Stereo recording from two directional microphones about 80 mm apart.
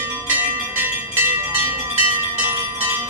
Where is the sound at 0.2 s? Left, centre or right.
Right.